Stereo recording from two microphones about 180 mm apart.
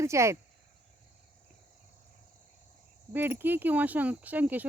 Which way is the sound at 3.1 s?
10° right (ahead or behind).